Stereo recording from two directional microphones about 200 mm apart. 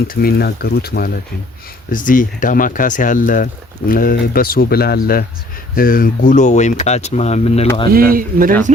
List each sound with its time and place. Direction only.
0.1 s speech: 50° left (ahead or behind); by 7.7 s 30° left (ahead or behind)
7.9 s speech: 45° right (ahead or behind)